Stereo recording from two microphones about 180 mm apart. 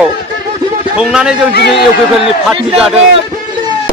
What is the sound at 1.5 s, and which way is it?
Speech, 65° left (ahead or behind).